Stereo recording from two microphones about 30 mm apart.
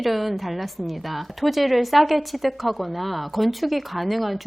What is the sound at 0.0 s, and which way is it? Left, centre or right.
A woman's voice, centre.